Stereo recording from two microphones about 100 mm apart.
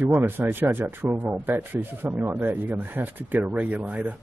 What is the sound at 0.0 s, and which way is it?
Speech, 20° right (ahead or behind).